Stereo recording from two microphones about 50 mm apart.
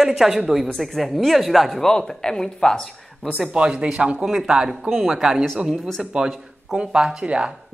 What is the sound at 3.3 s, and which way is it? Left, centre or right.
Speech, right.